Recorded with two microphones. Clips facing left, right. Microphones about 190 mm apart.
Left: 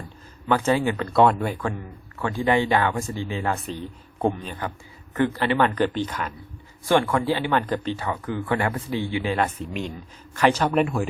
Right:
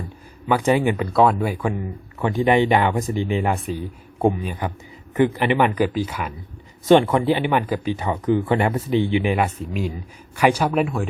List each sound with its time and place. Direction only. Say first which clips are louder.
0.4 s speech: right 3 dB; 15° right (ahead or behind)
1.1 s speech: even; centre (ahead or behind)
6.8 s speech: right 6 dB; 20° right (ahead or behind); by 11.0 s centre (ahead or behind)